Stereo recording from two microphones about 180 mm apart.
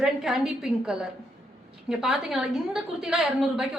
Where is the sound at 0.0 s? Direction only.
Centre (ahead or behind).